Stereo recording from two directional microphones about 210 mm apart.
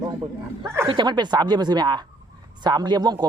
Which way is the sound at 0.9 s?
20° right (ahead or behind).